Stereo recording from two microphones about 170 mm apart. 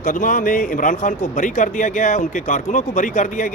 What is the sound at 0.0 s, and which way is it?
Speech, 55° left (ahead or behind).